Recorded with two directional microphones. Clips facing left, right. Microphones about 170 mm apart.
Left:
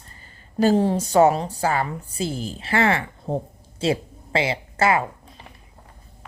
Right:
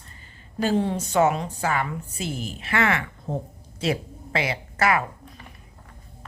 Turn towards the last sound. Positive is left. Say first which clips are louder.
# left 2 dB
turn(degrees=25)  # may be behind; listen again after turning